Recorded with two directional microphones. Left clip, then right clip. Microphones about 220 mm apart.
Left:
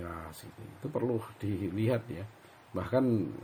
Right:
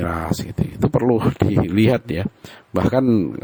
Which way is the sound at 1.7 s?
50° right (ahead or behind).